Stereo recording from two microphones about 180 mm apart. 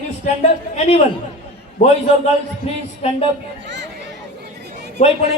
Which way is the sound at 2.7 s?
35° left (ahead or behind).